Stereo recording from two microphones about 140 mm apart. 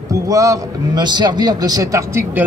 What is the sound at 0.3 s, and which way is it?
A man's voice, 25° right (ahead or behind).